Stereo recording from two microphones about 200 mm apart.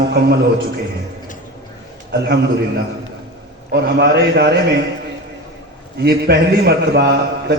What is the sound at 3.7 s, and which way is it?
Speech, 55° right (ahead or behind).